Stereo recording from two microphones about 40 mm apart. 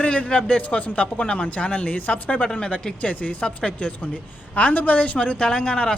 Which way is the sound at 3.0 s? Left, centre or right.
Left.